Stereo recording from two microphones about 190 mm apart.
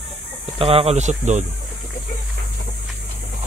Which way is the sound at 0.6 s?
30° right (ahead or behind).